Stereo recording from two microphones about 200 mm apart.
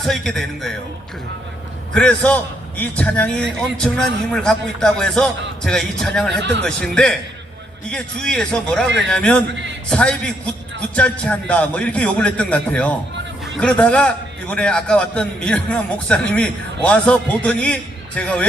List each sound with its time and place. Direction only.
0.0 s a man's voice: centre (ahead or behind)
1.9 s a man's voice: 5° left (ahead or behind)
6.4 s speech: 60° right (ahead or behind)
6.7 s a man's voice: 5° left (ahead or behind)